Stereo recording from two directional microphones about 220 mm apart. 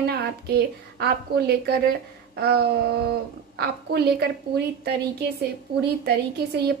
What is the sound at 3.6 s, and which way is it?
Speech, 45° right (ahead or behind).